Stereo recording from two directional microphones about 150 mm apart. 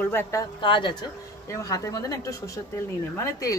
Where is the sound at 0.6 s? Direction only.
35° left (ahead or behind).